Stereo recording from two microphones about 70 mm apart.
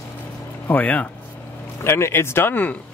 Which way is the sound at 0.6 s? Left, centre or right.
Left.